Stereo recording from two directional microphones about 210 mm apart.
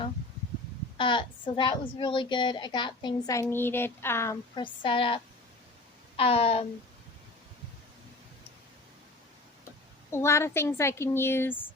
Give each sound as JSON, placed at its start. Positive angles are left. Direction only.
{"t": 0.9, "sound": "a woman's voice", "side_deg": 25}
{"t": 10.1, "sound": "speech", "side_deg": 10}